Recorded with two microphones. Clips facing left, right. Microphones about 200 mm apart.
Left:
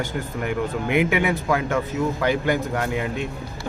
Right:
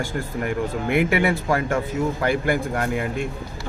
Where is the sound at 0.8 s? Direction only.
5° left (ahead or behind).